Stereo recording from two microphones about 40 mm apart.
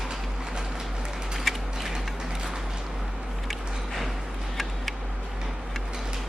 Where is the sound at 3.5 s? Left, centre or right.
Centre.